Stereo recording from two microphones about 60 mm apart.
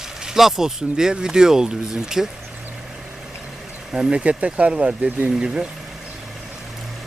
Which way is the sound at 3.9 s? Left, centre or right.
Centre.